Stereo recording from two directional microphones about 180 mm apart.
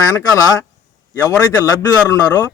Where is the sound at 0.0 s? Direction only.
20° left (ahead or behind).